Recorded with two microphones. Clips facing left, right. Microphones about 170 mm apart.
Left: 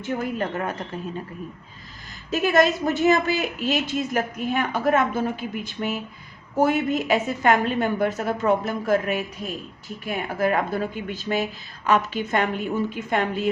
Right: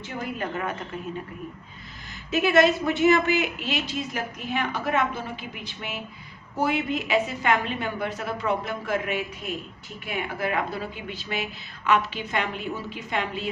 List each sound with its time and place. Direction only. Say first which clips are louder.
0.0 s speech: left 5 dB; 45° left (ahead or behind)
2.3 s speech: even; 40° left (ahead or behind)